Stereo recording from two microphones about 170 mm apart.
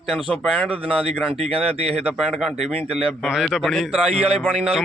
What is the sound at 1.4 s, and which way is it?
Speech, 35° right (ahead or behind).